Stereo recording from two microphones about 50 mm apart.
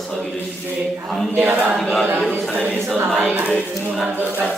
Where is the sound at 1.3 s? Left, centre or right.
Right.